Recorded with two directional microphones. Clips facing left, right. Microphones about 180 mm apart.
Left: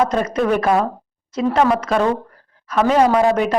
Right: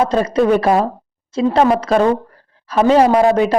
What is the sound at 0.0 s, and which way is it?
A woman's voice, 30° right (ahead or behind).